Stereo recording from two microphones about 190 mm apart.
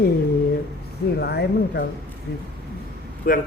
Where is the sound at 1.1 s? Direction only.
55° left (ahead or behind).